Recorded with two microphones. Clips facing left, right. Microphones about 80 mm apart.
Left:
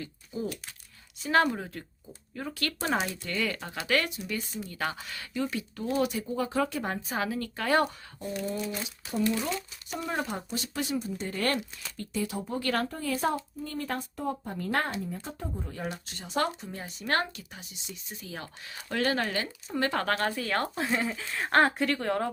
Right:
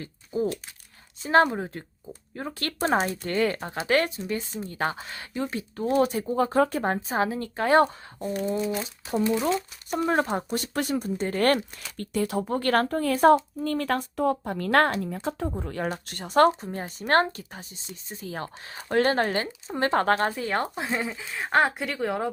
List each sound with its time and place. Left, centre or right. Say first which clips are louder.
0.0 s speech: right 7 dB; right
9.9 s speech: right 9 dB; right
10.2 s speech: right 7 dB; right
10.5 s speech: right 5 dB; right; by 21.1 s centre
21.1 s speech: right 2 dB; centre